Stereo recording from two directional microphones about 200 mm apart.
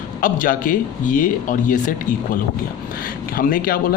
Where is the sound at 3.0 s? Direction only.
45° left (ahead or behind).